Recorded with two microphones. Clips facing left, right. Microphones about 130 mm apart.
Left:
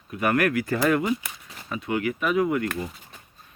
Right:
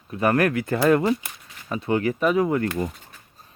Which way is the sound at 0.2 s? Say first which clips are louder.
Right 2 dB; 30° right (ahead or behind).